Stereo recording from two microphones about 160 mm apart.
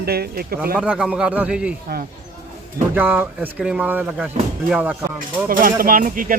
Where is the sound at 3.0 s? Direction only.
10° right (ahead or behind).